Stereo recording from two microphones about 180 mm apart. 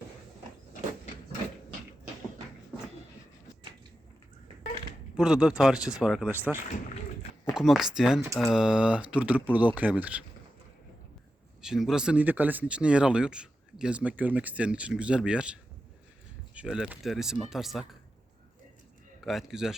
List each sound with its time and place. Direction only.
5.1 s speech: 5° right (ahead or behind)
11.6 s speech: 5° right (ahead or behind)
16.6 s speech: 5° right (ahead or behind)
19.2 s speech: centre (ahead or behind)